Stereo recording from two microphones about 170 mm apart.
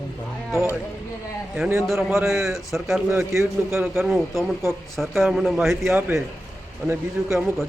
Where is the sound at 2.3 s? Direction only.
Centre (ahead or behind).